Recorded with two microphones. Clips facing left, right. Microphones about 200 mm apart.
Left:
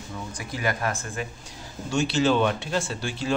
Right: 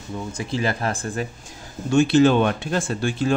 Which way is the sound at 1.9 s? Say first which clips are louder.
Right 7 dB; 55° right (ahead or behind).